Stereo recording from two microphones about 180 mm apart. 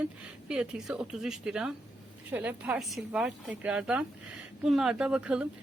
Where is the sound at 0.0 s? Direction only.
5° right (ahead or behind).